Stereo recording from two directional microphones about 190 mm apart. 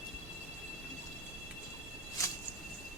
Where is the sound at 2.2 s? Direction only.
15° left (ahead or behind).